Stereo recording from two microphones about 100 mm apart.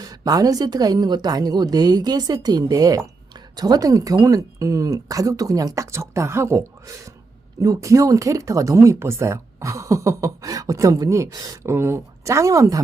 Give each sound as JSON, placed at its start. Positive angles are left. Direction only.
{"t": 0.0, "sound": "a woman's voice", "side_deg": -40}
{"t": 11.6, "sound": "a woman's voice", "side_deg": -30}